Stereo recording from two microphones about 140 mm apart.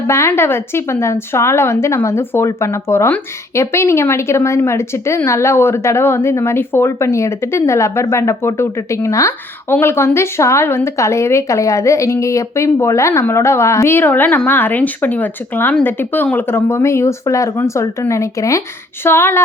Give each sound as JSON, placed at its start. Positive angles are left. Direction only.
{"t": 0.1, "sound": "a woman's voice", "side_deg": 20}